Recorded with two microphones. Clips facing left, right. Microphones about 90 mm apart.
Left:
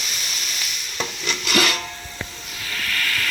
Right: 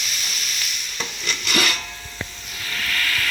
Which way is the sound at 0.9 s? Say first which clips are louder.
Left 3 dB; 5° left (ahead or behind).